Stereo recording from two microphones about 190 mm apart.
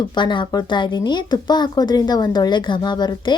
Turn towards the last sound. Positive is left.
turn(degrees=25)  # may be behind; listen again after turning